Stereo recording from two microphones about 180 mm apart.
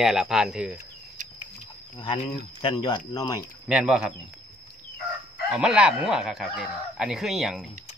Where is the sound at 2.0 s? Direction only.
25° left (ahead or behind).